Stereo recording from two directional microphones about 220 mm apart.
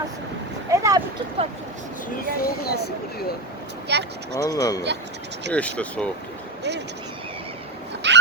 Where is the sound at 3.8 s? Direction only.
50° right (ahead or behind).